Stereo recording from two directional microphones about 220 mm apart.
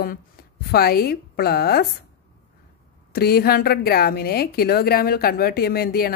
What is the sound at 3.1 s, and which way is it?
A woman's voice, 45° left (ahead or behind).